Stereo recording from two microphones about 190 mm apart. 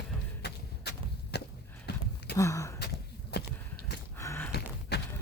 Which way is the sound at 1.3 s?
60° left (ahead or behind).